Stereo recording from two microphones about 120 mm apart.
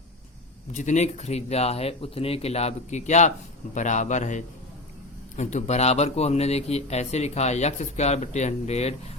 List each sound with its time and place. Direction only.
0.7 s speech: 90° left; by 3.3 s 75° left (ahead or behind)
3.8 s a man's voice: 90° left
5.4 s speech: 75° left (ahead or behind)